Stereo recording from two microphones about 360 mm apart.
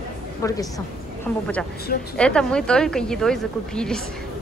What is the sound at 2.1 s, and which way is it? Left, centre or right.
Speech, centre.